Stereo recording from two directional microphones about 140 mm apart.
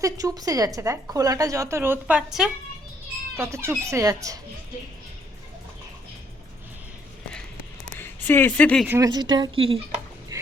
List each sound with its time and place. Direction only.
0.0 s a woman's voice: 25° right (ahead or behind); by 2.5 s 5° right (ahead or behind)
3.3 s a woman's voice: 20° right (ahead or behind)
7.9 s speech: 15° left (ahead or behind)
9.0 s a woman's voice: 30° right (ahead or behind)
10.3 s music: 25° right (ahead or behind)